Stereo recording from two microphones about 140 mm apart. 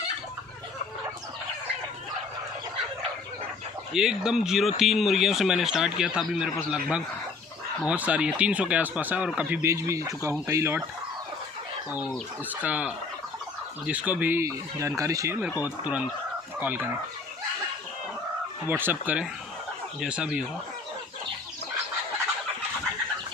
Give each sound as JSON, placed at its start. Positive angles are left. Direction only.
{"t": 3.9, "sound": "speech", "side_deg": -5}
{"t": 12.5, "sound": "speech", "side_deg": -10}
{"t": 15.6, "sound": "speech", "side_deg": -10}
{"t": 18.7, "sound": "speech", "side_deg": -15}